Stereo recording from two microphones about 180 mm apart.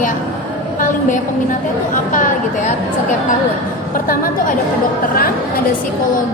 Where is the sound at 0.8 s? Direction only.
45° left (ahead or behind).